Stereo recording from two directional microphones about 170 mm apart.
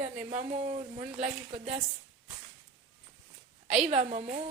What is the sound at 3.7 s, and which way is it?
Speech, 40° right (ahead or behind).